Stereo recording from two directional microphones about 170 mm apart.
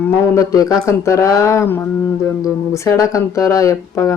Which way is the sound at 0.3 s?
20° left (ahead or behind).